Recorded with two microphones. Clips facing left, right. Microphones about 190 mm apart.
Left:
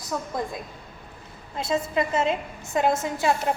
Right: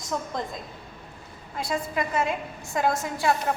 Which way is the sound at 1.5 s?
25° left (ahead or behind).